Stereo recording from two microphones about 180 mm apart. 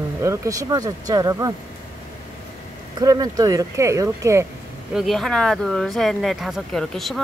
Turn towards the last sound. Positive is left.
turn(degrees=0)  # may be behind; listen again after turning